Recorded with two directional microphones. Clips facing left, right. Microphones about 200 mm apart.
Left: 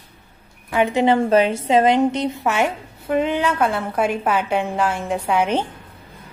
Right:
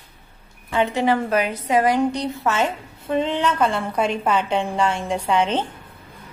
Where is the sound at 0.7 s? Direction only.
15° left (ahead or behind).